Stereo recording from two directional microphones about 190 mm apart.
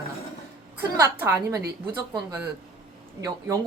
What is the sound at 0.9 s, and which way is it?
Speech, 15° right (ahead or behind).